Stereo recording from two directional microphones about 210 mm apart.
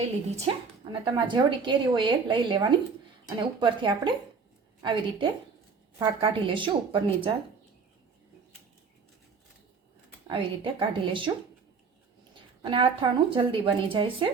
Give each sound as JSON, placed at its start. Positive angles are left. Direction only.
{"t": 0.0, "sound": "speech", "side_deg": -30}
{"t": 10.2, "sound": "speech", "side_deg": -25}
{"t": 12.3, "sound": "speech", "side_deg": -25}